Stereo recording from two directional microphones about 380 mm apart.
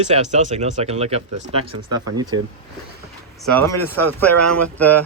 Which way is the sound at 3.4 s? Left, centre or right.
Centre.